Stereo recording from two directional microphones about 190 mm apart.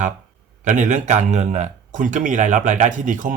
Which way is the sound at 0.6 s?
40° right (ahead or behind).